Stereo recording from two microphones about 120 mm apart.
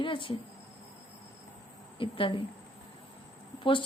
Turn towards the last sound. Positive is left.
turn(degrees=45)  # may be behind; listen again after turning